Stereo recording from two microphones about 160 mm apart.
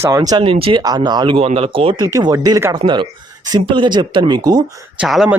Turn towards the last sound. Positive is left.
turn(degrees=-5)  # may be behind; listen again after turning